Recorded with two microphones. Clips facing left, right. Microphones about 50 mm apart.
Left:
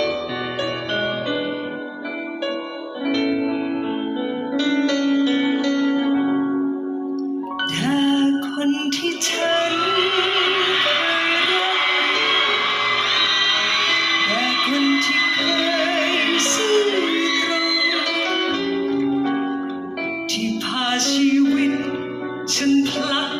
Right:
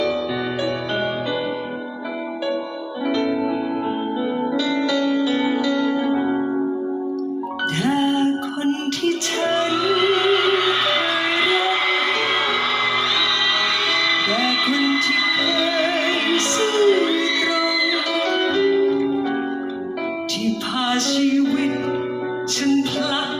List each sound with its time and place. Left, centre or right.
3.1 s music: left
7.9 s music: left
20.8 s music: left